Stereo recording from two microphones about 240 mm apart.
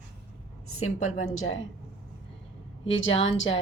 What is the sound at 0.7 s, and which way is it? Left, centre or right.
Speech, left.